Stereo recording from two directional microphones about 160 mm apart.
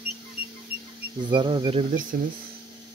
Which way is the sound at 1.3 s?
30° right (ahead or behind).